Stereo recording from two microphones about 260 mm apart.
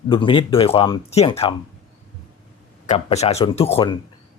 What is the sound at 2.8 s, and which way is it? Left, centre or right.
Speech, left.